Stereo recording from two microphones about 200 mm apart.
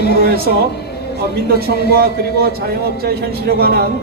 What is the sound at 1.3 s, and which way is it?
A man's voice, 50° right (ahead or behind).